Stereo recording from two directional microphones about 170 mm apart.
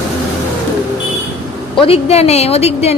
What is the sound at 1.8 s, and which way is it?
A woman's voice, 35° left (ahead or behind).